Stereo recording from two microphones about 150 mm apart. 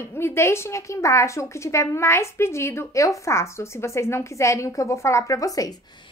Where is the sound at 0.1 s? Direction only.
15° left (ahead or behind).